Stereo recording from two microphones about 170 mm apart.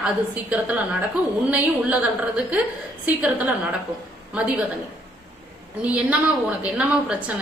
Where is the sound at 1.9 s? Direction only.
10° right (ahead or behind).